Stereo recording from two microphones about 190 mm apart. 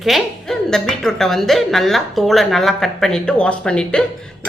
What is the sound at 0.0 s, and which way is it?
A woman's voice, centre (ahead or behind).